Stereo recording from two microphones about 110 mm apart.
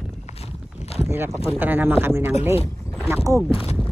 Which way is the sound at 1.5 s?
20° right (ahead or behind).